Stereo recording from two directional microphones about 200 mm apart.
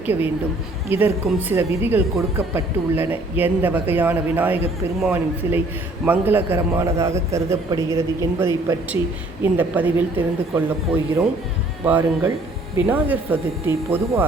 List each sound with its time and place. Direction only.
0.0 s a woman's voice: 10° right (ahead or behind)
11.9 s a man's voice: 10° right (ahead or behind)